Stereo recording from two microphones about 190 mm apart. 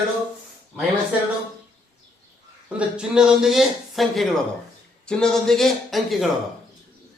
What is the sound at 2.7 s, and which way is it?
Speech, 5° right (ahead or behind).